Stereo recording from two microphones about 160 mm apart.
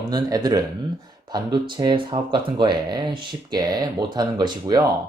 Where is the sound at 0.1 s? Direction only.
25° right (ahead or behind).